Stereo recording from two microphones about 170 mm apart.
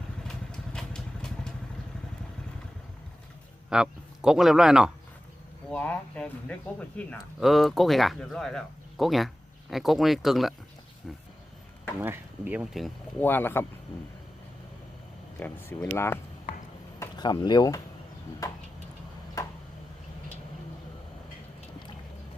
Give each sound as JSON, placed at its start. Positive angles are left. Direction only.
{"t": 0.3, "sound": "vehicle", "side_deg": 5}
{"t": 3.7, "sound": "a man's voice", "side_deg": -5}
{"t": 5.7, "sound": "speech", "side_deg": 10}
{"t": 11.9, "sound": "speech", "side_deg": -10}
{"t": 13.1, "sound": "speech", "side_deg": 10}
{"t": 15.4, "sound": "speech", "side_deg": 10}